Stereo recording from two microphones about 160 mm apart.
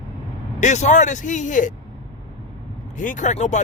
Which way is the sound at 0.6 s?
50° left (ahead or behind).